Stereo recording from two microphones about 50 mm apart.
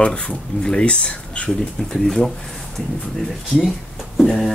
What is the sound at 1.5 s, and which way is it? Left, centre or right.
Speech, centre.